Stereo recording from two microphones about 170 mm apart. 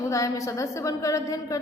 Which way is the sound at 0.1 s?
20° left (ahead or behind).